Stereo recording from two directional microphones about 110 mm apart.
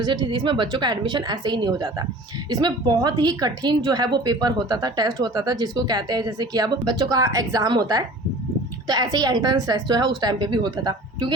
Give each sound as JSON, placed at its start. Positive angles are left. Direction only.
{"t": 0.0, "sound": "a woman's voice", "side_deg": -45}